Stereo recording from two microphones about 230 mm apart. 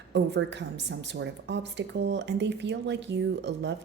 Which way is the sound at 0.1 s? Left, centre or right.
Right.